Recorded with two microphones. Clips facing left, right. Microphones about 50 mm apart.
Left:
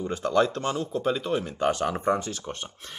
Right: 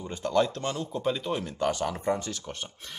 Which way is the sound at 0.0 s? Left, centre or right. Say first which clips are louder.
Left 3 dB; centre.